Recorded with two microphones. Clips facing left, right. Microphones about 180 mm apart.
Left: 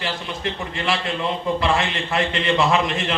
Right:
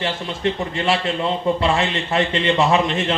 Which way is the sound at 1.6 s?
25° right (ahead or behind).